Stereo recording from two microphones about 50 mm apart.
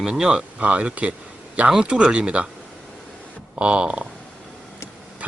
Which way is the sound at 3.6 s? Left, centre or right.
Right.